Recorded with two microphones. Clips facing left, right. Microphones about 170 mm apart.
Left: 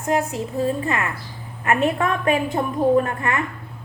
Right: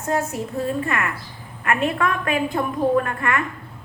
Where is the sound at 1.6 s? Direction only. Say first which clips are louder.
Left 2 dB; 25° left (ahead or behind).